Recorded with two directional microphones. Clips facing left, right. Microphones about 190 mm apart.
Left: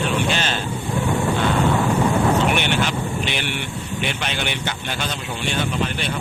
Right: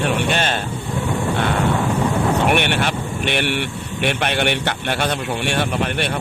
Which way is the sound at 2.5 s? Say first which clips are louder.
Right 3 dB; 60° right (ahead or behind).